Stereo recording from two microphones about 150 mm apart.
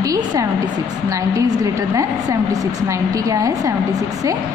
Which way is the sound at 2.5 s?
20° right (ahead or behind).